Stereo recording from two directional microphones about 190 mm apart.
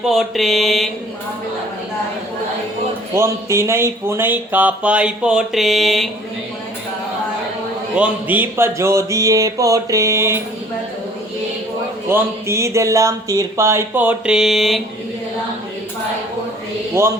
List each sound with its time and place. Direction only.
0.0 s mantra: centre (ahead or behind)
3.2 s speech: 15° right (ahead or behind)
7.9 s speech: 10° right (ahead or behind)
12.0 s speech: 15° right (ahead or behind)